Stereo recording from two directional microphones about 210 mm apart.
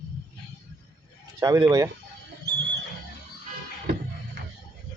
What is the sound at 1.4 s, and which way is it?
Speech, 15° right (ahead or behind).